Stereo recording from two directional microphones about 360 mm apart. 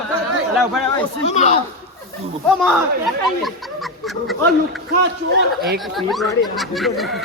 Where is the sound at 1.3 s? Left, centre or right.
Centre.